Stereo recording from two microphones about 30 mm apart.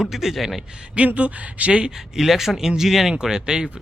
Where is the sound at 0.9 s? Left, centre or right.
Right.